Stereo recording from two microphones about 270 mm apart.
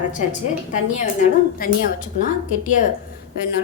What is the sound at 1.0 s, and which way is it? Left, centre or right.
A woman's voice, left.